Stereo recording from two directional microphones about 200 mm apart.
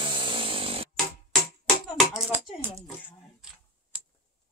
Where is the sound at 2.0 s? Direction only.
Centre (ahead or behind).